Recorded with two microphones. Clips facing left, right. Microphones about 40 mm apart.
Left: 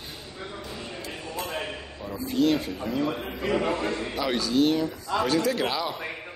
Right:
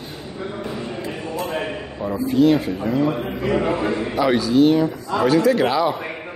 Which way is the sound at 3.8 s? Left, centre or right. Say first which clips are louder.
Right 8 dB; centre.